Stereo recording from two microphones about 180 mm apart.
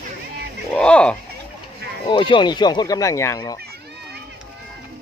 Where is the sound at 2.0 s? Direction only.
25° left (ahead or behind).